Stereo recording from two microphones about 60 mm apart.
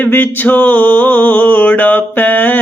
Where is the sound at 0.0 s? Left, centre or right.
Left.